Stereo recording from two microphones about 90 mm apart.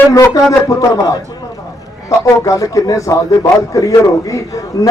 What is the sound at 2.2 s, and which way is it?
A man's voice, 40° left (ahead or behind).